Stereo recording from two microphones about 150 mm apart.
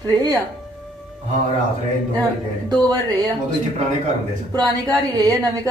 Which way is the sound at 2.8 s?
25° right (ahead or behind).